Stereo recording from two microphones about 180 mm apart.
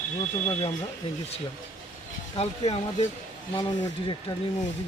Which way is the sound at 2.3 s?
35° left (ahead or behind).